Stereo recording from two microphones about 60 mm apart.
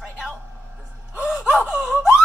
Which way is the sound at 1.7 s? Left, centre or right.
Centre.